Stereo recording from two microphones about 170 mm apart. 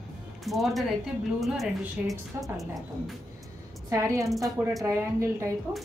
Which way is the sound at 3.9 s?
20° right (ahead or behind).